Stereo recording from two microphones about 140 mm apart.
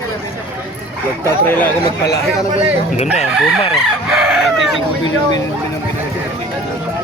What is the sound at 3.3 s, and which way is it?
Chicken, 5° right (ahead or behind).